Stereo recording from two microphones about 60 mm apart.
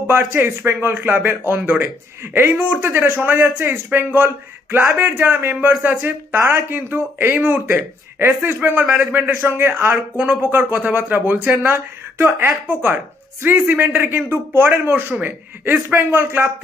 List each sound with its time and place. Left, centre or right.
0.0 s speech: right
10.1 s speech: right